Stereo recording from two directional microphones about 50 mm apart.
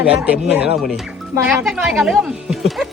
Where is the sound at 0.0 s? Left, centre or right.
Right.